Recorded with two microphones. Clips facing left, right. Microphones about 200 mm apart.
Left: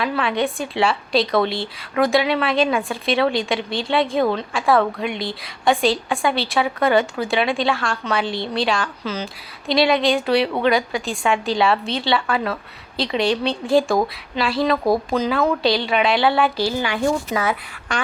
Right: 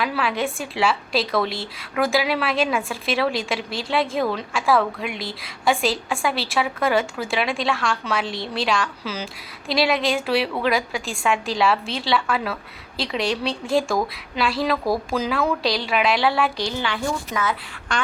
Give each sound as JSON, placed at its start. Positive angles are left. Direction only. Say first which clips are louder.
{"t": 0.0, "sound": "a woman's voice", "louder": "left 3 dB", "side_deg": 0}
{"t": 16.7, "sound": "a woman's voice", "louder": "left 5 dB", "side_deg": 45}